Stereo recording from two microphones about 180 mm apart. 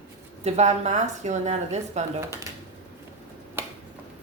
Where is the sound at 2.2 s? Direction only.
15° right (ahead or behind).